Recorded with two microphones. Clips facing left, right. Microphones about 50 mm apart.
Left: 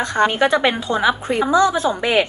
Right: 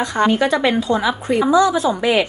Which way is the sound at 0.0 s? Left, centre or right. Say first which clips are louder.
Even; left.